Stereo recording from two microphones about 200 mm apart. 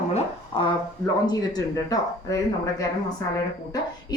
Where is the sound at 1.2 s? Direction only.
20° left (ahead or behind).